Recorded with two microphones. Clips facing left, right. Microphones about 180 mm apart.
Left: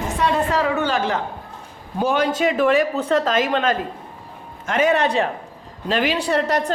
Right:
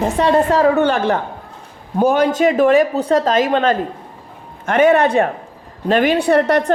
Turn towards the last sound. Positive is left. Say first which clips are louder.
# right 6 dB
turn(degrees=-60)  # may be behind; listen again after turning